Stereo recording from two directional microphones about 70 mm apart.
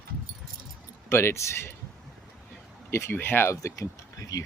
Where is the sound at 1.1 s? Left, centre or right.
Left.